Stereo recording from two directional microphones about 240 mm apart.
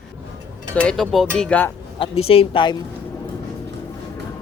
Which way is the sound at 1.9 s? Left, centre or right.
Left.